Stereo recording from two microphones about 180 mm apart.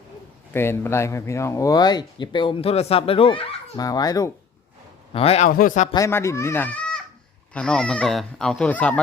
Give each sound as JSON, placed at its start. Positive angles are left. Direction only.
{"t": 0.5, "sound": "speech", "side_deg": 15}
{"t": 5.1, "sound": "a man's voice", "side_deg": 35}
{"t": 5.5, "sound": "speech", "side_deg": 50}
{"t": 5.9, "sound": "speech", "side_deg": 15}